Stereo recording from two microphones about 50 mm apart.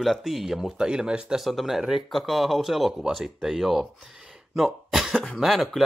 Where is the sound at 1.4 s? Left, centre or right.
Centre.